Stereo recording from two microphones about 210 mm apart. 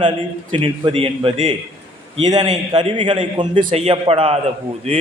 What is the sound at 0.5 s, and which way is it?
A man's voice, 25° right (ahead or behind).